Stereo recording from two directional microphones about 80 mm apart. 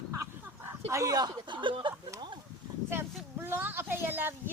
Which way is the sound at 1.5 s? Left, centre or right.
Right.